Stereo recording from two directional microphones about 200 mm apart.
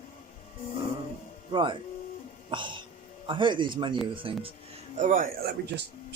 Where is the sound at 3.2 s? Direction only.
25° right (ahead or behind).